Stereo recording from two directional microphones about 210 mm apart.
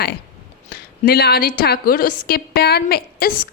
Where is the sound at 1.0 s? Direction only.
50° left (ahead or behind).